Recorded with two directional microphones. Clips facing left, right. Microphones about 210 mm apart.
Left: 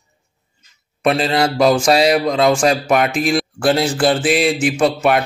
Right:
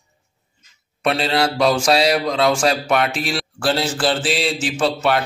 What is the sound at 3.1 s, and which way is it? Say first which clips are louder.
Speech: left 7 dB; 45° left (ahead or behind).